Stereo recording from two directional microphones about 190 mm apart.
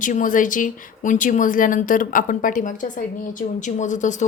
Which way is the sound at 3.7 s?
40° left (ahead or behind).